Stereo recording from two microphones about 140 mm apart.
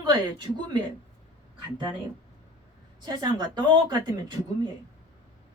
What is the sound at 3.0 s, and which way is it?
Speech, 30° right (ahead or behind).